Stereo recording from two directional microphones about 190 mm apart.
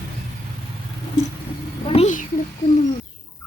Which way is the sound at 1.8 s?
30° left (ahead or behind).